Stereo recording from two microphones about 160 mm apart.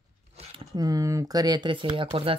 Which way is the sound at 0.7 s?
20° right (ahead or behind).